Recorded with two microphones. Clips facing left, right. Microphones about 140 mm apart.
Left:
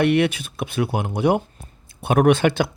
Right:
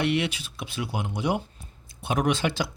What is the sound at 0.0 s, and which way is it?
Speech, 55° left (ahead or behind).